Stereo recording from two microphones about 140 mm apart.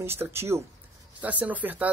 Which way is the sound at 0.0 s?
15° right (ahead or behind).